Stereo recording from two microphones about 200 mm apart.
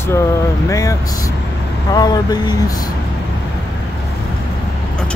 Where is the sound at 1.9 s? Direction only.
20° left (ahead or behind).